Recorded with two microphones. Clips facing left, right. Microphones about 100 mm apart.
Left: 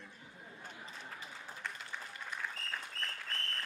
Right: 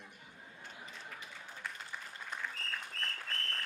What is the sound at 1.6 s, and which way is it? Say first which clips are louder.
Applause: even; 5° right (ahead or behind).